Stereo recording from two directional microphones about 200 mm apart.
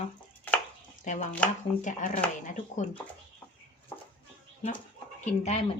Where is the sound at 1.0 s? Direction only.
35° left (ahead or behind).